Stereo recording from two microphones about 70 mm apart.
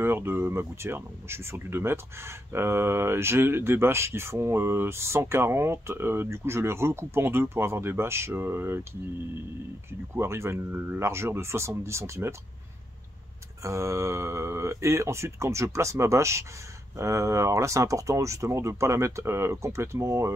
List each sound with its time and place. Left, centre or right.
0.0 s speech: right
10.1 s speech: right
13.6 s speech: right